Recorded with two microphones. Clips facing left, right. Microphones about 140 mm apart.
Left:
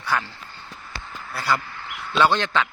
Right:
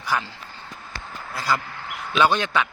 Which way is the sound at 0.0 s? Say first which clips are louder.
Even; 15° right (ahead or behind).